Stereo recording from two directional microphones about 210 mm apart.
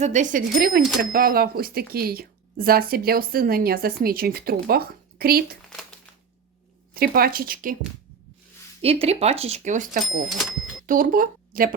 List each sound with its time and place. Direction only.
0.0 s speech: 35° right (ahead or behind)
6.9 s speech: 45° right (ahead or behind)
8.8 s speech: 30° right (ahead or behind)
10.2 s cash register: centre (ahead or behind)
10.8 s speech: 40° right (ahead or behind)